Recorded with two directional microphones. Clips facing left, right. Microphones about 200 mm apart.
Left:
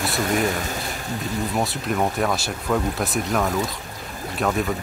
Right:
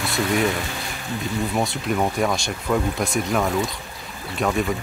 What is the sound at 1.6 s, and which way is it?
Speech, centre (ahead or behind).